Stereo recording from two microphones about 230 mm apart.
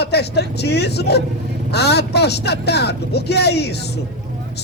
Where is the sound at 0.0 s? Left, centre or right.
Left.